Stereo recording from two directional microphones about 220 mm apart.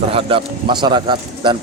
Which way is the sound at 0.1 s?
25° right (ahead or behind).